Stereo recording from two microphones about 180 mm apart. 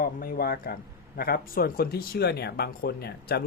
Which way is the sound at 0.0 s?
55° left (ahead or behind).